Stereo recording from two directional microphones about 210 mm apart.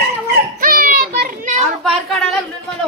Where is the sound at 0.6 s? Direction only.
40° right (ahead or behind).